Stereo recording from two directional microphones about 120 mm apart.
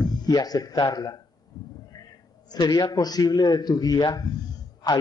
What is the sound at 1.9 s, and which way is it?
A man's voice, 35° left (ahead or behind).